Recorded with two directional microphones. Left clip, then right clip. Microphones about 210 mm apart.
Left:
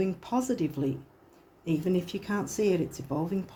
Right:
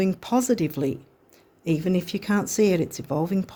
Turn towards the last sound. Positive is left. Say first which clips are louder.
# right 6 dB
turn(degrees=-55)  # may be behind; listen again after turning